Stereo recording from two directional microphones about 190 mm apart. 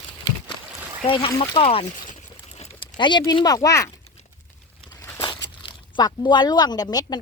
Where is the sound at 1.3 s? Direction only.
25° left (ahead or behind).